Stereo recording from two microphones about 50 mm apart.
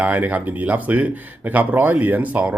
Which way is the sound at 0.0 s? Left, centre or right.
Right.